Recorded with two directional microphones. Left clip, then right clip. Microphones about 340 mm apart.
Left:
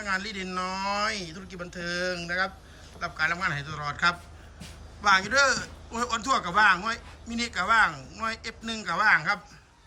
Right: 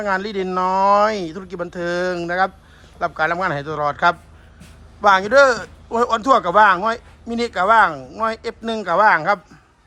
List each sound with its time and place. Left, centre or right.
0.0 s a man's voice: centre